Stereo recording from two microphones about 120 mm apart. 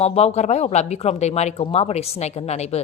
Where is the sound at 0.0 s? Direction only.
60° left (ahead or behind).